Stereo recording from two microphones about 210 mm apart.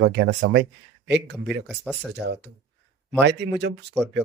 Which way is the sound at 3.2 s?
55° right (ahead or behind).